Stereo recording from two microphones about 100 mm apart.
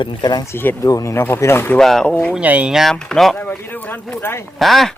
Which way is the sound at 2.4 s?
15° right (ahead or behind).